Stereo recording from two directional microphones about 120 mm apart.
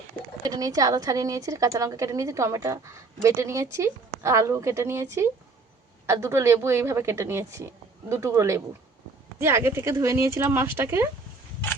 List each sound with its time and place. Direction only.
0.4 s speech: 30° right (ahead or behind)